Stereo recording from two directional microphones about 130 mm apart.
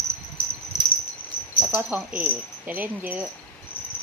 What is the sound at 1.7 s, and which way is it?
Cricket, 10° right (ahead or behind).